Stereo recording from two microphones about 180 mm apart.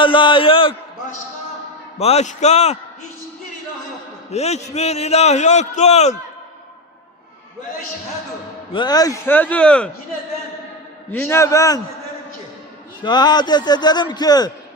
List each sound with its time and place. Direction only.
0.0 s a man's voice: 30° left (ahead or behind)
2.0 s a man's voice: 35° left (ahead or behind)
4.3 s a man's voice: 35° left (ahead or behind)
8.7 s speech: 25° left (ahead or behind); by 9.9 s 5° left (ahead or behind)
11.1 s speech: 10° left (ahead or behind)
13.0 s a man's voice: 25° left (ahead or behind)